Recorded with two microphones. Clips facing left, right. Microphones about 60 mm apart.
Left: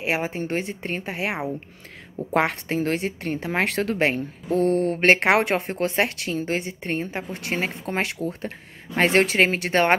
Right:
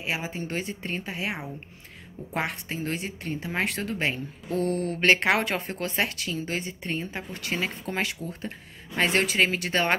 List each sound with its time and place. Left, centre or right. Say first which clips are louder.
0.0 s a woman's voice: left 6 dB; left
4.5 s speech: left 6 dB; left